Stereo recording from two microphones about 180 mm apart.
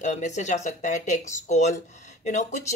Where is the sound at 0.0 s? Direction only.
40° left (ahead or behind).